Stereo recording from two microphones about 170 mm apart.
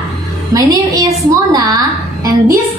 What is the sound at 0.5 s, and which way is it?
A woman's voice, 20° right (ahead or behind).